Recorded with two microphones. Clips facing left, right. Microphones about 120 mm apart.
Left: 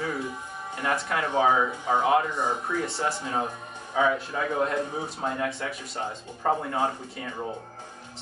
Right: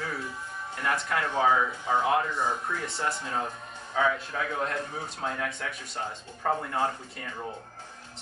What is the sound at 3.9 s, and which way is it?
Speech, 10° left (ahead or behind).